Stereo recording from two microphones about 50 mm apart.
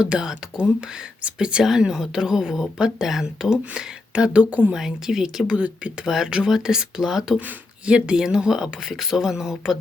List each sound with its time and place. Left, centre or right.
0.0 s speech: centre
4.4 s speech: right
4.7 s speech: centre
5.5 s speech: right
6.1 s speech: centre
7.9 s speech: centre